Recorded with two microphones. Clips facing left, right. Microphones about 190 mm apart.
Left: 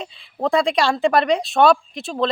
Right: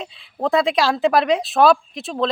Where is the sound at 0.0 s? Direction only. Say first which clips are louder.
Even; centre (ahead or behind).